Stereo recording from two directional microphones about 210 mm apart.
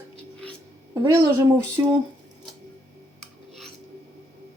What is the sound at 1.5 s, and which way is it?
Speech, 15° right (ahead or behind).